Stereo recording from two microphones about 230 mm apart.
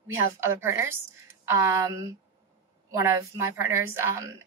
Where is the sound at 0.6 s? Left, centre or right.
Centre.